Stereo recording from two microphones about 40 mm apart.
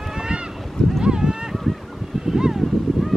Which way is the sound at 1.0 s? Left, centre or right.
Centre.